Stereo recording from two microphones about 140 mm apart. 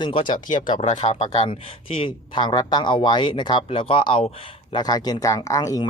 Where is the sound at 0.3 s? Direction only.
75° left (ahead or behind).